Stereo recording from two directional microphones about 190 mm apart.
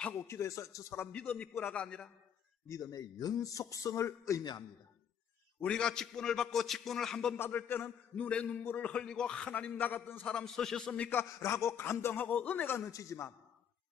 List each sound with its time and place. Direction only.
0.0 s a man's voice: 15° left (ahead or behind)
2.7 s a man's voice: 20° left (ahead or behind)
5.6 s a man's voice: 5° left (ahead or behind)